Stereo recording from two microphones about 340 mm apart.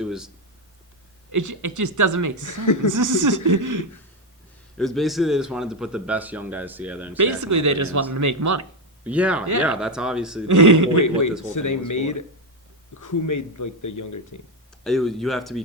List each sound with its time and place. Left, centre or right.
0.0 s speech: centre
1.3 s speech: right
2.5 s speech: left
2.9 s speech: right
4.8 s speech: centre
7.2 s speech: right
9.0 s speech: centre
10.5 s speech: right
11.5 s speech: left
14.8 s speech: centre